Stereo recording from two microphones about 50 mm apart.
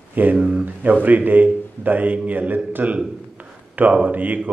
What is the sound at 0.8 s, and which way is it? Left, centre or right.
A man's voice, right.